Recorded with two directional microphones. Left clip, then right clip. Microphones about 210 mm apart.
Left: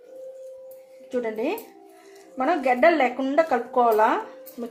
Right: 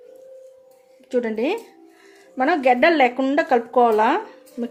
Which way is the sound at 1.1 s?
50° right (ahead or behind).